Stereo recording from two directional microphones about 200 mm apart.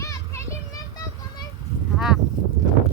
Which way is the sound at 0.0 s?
15° left (ahead or behind).